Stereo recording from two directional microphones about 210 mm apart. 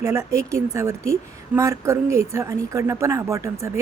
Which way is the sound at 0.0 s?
15° right (ahead or behind).